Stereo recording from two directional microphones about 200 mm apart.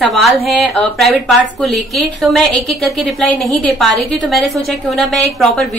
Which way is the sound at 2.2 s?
Centre (ahead or behind).